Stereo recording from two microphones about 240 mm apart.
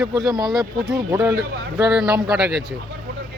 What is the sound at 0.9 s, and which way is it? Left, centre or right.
Speech, centre.